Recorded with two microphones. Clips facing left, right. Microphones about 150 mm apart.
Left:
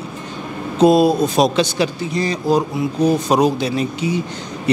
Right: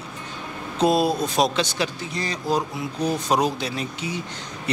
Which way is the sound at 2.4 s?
50° left (ahead or behind).